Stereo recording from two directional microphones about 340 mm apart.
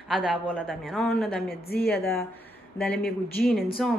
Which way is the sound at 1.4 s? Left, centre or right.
Left.